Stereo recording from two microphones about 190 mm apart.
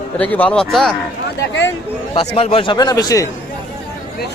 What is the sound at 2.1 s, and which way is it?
A man's voice, 30° left (ahead or behind).